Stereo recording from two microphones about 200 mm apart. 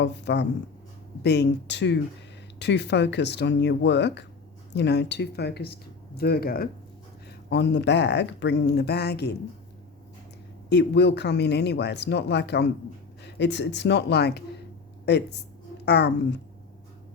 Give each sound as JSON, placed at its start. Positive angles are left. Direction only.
{"t": 0.0, "sound": "speech", "side_deg": 60}
{"t": 10.7, "sound": "speech", "side_deg": 60}